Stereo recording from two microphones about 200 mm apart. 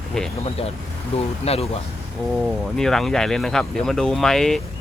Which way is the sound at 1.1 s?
30° left (ahead or behind).